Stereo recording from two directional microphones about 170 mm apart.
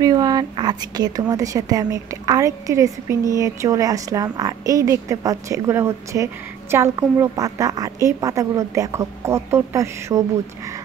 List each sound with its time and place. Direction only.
0.0 s a woman's voice: 25° right (ahead or behind)